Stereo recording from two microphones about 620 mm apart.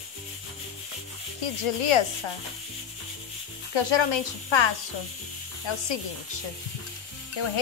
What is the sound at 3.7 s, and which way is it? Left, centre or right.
Speech, left.